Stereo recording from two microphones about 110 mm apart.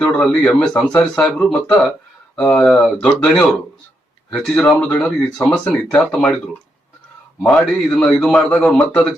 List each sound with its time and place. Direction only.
0.0 s a man's voice: 10° left (ahead or behind)
2.4 s a man's voice: 15° left (ahead or behind)
2.7 s a man's voice: 5° left (ahead or behind)
7.4 s a man's voice: centre (ahead or behind)